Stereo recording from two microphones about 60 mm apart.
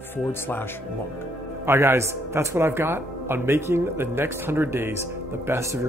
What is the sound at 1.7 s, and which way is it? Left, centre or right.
Speech, right.